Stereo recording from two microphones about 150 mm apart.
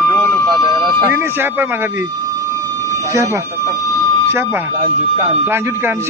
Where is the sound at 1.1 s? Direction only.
15° right (ahead or behind).